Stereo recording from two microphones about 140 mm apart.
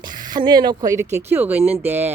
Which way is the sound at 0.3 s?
30° right (ahead or behind).